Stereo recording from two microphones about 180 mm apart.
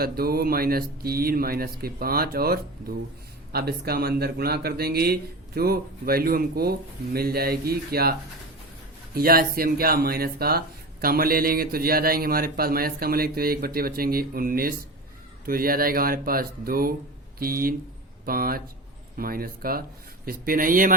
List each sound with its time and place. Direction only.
0.0 s speech: 55° right (ahead or behind)
9.1 s speech: 55° right (ahead or behind)